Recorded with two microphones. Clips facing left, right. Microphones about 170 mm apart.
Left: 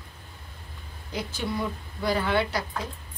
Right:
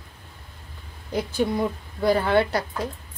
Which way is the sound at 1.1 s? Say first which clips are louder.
Right 7 dB; 50° right (ahead or behind).